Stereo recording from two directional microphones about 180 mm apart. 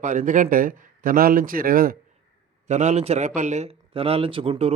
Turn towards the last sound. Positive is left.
turn(degrees=-30)  # may be behind; listen again after turning